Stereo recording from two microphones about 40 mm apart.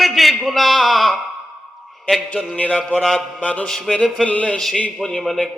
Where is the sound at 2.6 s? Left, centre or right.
Left.